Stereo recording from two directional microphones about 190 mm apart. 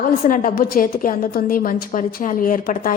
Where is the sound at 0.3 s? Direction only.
45° left (ahead or behind).